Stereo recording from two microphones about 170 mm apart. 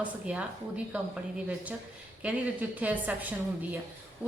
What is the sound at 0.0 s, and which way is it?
A woman's voice, 5° right (ahead or behind).